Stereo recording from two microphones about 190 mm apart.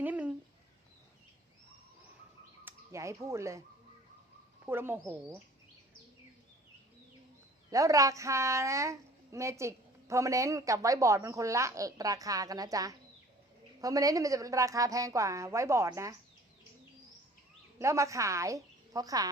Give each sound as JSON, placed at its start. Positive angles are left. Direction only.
{"t": 0.0, "sound": "a sound", "side_deg": -10}
{"t": 2.6, "sound": "speech", "side_deg": -15}
{"t": 4.6, "sound": "a woman's voice", "side_deg": -10}
{"t": 7.7, "sound": "a woman's voice", "side_deg": -15}
{"t": 17.7, "sound": "a woman's voice", "side_deg": -15}